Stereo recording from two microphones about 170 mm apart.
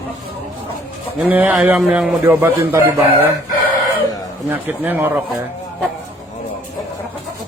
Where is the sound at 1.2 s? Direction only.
10° right (ahead or behind).